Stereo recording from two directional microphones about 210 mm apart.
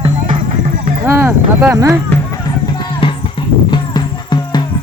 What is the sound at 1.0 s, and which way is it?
Speech, 10° right (ahead or behind).